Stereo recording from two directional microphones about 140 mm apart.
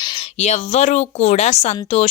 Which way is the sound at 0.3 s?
55° left (ahead or behind).